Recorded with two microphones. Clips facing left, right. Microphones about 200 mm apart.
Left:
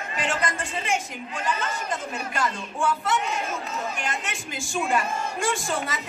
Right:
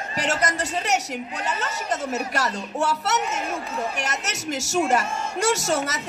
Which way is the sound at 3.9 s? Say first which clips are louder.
Right 2 dB; 75° right (ahead or behind).